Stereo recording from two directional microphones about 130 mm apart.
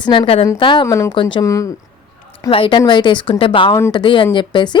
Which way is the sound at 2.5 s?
45° left (ahead or behind).